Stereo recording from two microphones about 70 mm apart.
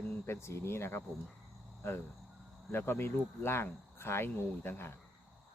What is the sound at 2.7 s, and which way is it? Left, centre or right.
Speech, left.